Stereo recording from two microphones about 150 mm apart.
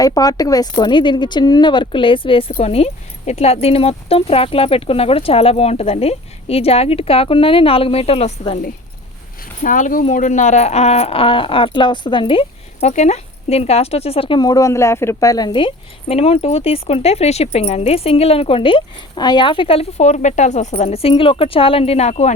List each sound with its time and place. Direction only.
0.0 s speech: 25° left (ahead or behind); by 8.5 s 40° left (ahead or behind)
9.6 s speech: 60° left (ahead or behind); by 12.9 s 35° left (ahead or behind)
12.9 s speech: 50° left (ahead or behind)